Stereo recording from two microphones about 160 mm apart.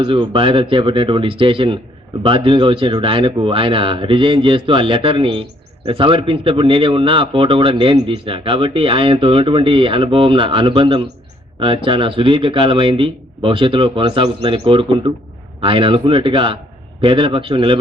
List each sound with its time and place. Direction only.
0.0 s speech: 30° right (ahead or behind)